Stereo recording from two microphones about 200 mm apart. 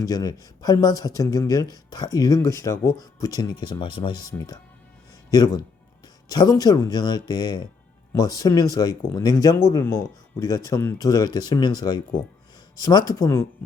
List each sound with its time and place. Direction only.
0.0 s speech: 20° left (ahead or behind)